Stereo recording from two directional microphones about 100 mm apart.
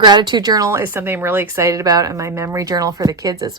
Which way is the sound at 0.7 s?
25° right (ahead or behind).